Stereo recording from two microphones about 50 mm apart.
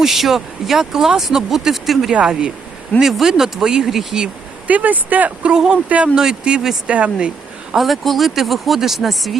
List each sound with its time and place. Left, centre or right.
0.0 s speech: centre
2.1 s speech: centre
3.0 s speech: centre
4.7 s speech: right
5.5 s speech: centre
7.8 s speech: centre